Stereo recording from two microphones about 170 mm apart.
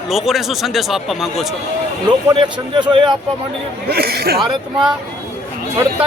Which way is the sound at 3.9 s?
65° right (ahead or behind).